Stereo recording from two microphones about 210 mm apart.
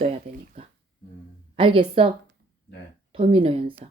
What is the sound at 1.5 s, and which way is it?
Speech, 25° right (ahead or behind).